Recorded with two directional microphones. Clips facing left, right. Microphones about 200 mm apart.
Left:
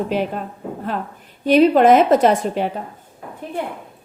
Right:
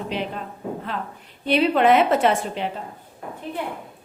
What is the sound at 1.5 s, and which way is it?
A woman's voice, 45° left (ahead or behind).